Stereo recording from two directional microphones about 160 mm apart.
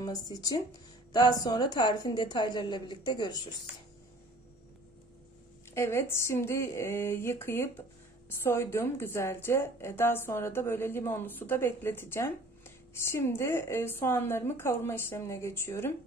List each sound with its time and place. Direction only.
0.0 s a woman's voice: 25° left (ahead or behind)
5.8 s a woman's voice: 15° left (ahead or behind)